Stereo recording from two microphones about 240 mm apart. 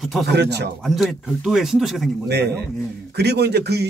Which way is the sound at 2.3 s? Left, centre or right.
Right.